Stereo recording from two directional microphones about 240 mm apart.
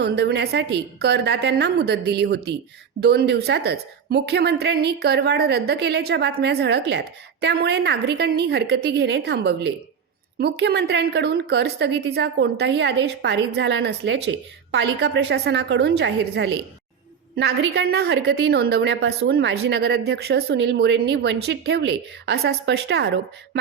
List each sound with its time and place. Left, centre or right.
0.0 s a woman's voice: right